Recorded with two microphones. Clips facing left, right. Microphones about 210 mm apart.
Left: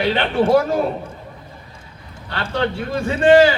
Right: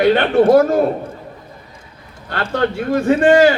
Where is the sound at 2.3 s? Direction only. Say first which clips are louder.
Right 3 dB; 45° right (ahead or behind).